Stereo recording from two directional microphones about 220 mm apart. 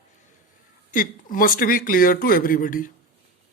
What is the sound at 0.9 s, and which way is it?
A woman's voice, 40° left (ahead or behind).